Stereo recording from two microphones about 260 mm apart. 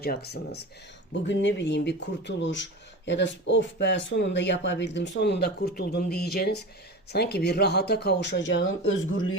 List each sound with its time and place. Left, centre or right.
0.0 s speech: left